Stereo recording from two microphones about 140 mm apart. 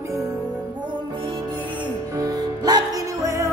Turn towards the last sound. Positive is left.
turn(degrees=-20)  # may be behind; listen again after turning